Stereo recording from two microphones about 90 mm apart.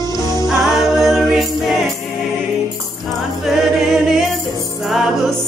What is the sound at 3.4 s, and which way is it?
Singing, centre (ahead or behind).